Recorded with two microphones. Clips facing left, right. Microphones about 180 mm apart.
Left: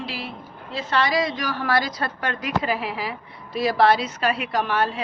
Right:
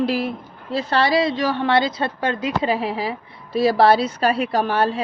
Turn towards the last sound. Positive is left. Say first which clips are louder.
# right 4 dB
turn(degrees=-30)  # may be behind; listen again after turning